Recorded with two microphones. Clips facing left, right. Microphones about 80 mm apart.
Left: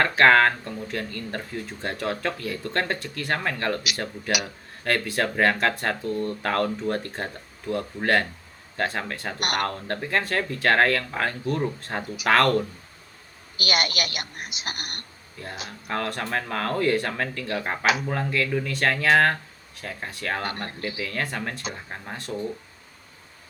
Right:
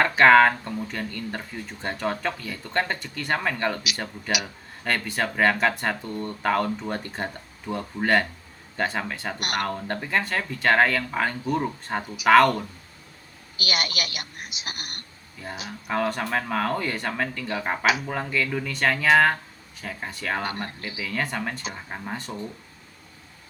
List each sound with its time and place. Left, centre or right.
0.0 s speech: centre
13.6 s a woman's voice: left
15.4 s speech: centre